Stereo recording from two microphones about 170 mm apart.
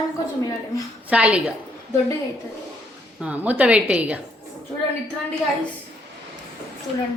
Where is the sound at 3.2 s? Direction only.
10° right (ahead or behind).